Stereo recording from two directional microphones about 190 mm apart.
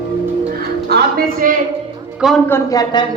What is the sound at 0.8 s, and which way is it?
Music, 55° right (ahead or behind).